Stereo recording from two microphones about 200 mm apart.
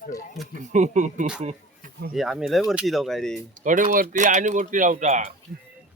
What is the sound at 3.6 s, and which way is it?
Speech, 40° right (ahead or behind).